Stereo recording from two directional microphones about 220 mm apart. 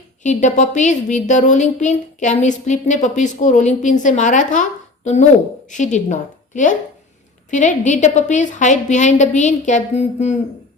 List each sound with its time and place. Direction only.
0.2 s a woman's voice: 35° left (ahead or behind)